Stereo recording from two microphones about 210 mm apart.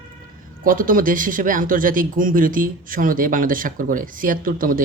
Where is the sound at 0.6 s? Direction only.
40° right (ahead or behind).